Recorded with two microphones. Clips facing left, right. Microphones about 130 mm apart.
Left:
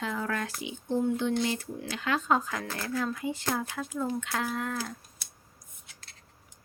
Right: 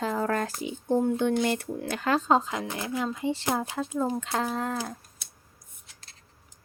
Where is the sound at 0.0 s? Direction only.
40° right (ahead or behind).